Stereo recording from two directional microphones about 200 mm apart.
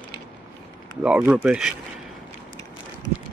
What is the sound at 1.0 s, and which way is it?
Speech, 5° right (ahead or behind).